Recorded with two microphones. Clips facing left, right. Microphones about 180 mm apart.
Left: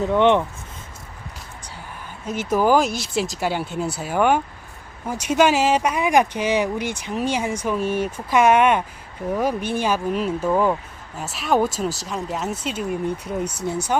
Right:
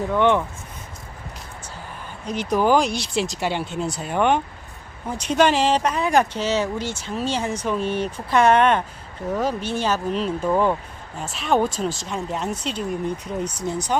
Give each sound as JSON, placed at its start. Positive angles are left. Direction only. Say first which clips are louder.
{"t": 0.0, "sound": "speech", "louder": "left 2 dB", "side_deg": 20}
{"t": 2.2, "sound": "speech", "louder": "left 1 dB", "side_deg": 5}